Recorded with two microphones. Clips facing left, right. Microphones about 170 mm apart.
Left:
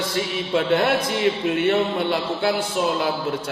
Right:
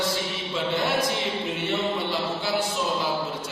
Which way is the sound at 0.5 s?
65° left (ahead or behind).